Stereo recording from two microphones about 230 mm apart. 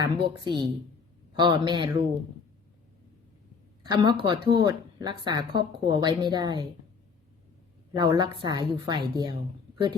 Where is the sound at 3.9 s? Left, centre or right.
Centre.